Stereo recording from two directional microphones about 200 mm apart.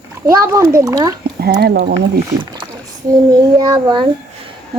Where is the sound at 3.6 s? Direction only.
20° right (ahead or behind).